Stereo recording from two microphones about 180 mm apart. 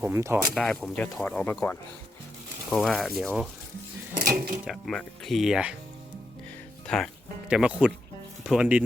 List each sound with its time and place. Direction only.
0.0 s speech: 15° right (ahead or behind)
0.5 s speech: 5° left (ahead or behind)
2.6 s speech: centre (ahead or behind)
4.4 s speech: 50° right (ahead or behind)
4.6 s speech: centre (ahead or behind)
6.8 s speech: 5° left (ahead or behind)